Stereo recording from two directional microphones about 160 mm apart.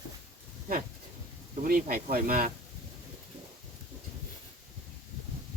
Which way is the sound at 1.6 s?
65° right (ahead or behind).